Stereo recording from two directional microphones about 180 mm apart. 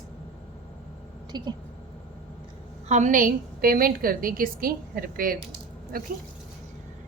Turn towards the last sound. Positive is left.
turn(degrees=-55)  # may be behind; listen again after turning